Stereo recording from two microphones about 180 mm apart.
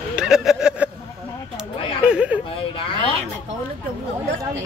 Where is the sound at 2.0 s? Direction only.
5° right (ahead or behind).